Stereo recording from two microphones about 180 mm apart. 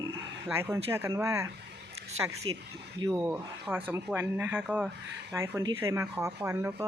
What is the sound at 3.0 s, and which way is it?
A woman's voice, 15° right (ahead or behind).